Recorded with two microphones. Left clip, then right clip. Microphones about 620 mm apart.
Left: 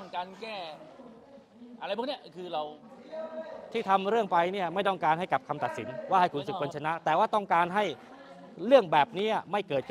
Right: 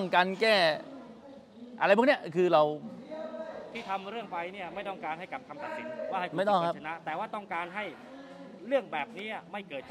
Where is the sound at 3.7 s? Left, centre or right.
Left.